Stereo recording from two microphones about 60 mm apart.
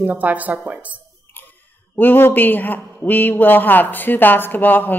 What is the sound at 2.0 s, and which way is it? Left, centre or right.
A man's voice, left.